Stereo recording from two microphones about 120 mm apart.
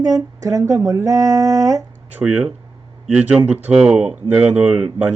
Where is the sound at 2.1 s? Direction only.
10° right (ahead or behind).